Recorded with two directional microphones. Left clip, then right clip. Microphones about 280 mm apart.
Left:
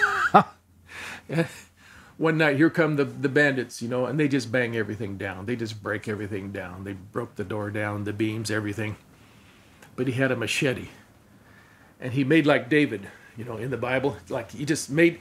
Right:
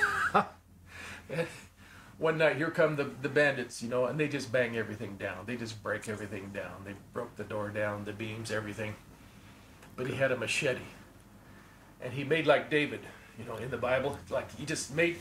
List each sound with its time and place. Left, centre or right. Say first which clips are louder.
0.0 s a sound: left 9 dB; left
2.2 s speech: left 7 dB; left
9.9 s speech: left 5 dB; left
12.0 s speech: left 9 dB; left